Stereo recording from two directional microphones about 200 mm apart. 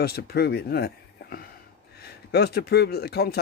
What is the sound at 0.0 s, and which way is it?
Speech, 50° left (ahead or behind).